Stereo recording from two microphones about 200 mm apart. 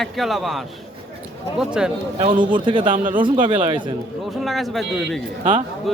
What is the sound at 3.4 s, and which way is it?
Speech, 25° right (ahead or behind).